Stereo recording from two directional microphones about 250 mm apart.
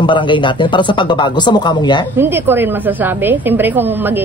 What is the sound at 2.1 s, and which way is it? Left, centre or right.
A woman's voice, centre.